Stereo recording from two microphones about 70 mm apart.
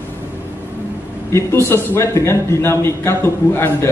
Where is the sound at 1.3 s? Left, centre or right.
Left.